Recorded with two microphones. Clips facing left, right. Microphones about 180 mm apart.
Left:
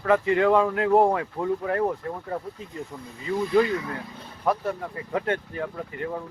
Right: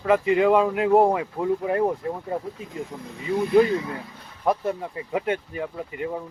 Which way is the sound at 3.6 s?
20° right (ahead or behind).